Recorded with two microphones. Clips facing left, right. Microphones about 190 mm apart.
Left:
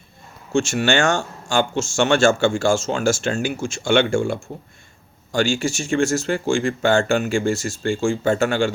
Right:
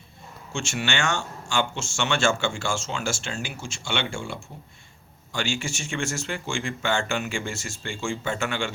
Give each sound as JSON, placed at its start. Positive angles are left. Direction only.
{"t": 0.5, "sound": "speech", "side_deg": 40}